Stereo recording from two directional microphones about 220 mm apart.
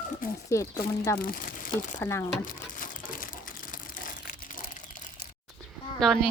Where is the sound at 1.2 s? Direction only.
40° left (ahead or behind).